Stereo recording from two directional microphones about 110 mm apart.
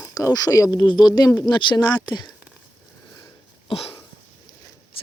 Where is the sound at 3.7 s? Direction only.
60° left (ahead or behind).